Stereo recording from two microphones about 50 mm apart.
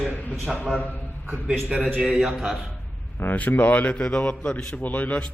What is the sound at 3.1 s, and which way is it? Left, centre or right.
A man's voice, left.